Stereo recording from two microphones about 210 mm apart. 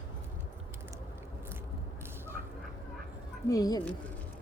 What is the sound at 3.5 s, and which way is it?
Speech, 20° left (ahead or behind).